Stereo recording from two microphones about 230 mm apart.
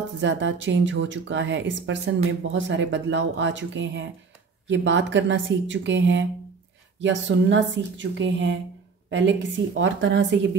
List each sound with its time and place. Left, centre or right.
0.2 s speech: right